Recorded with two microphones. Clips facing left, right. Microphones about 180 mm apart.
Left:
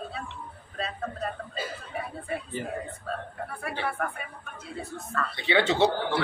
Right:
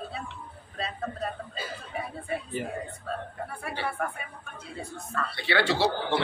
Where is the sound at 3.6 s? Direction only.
Centre (ahead or behind).